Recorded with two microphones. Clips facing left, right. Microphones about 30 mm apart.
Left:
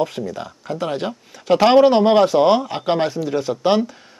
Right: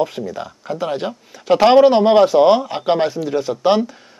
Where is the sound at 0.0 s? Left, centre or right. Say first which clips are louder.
Right 1 dB; centre.